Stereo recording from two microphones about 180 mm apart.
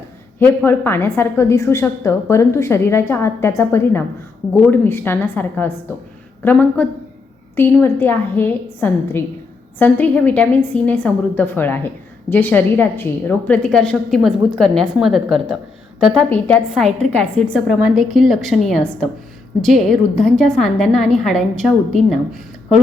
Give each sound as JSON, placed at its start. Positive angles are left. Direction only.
{"t": 0.3, "sound": "a woman's voice", "side_deg": 10}